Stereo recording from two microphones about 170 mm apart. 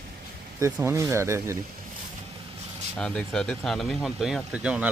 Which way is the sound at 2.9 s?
5° left (ahead or behind).